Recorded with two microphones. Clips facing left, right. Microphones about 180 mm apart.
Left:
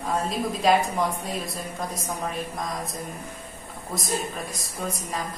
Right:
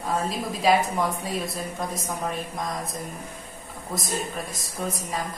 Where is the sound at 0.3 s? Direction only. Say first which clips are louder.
Left 1 dB; centre (ahead or behind).